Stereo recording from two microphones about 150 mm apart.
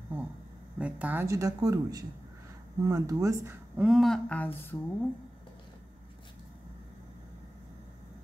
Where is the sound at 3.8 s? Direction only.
Centre (ahead or behind).